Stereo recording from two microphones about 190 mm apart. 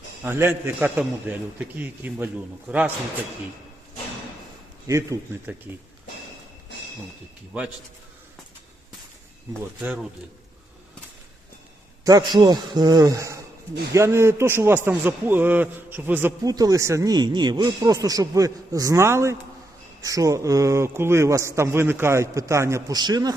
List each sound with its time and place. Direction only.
0.3 s speech: 10° right (ahead or behind)
4.9 s speech: 15° right (ahead or behind)
9.8 s speech: 5° right (ahead or behind)
12.0 s a man's voice: 20° right (ahead or behind)